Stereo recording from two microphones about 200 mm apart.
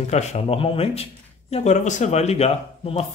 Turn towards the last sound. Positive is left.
turn(degrees=30)  # may be behind; listen again after turning